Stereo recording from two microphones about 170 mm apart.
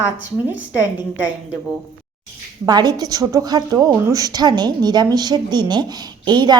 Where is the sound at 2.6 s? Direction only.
25° right (ahead or behind).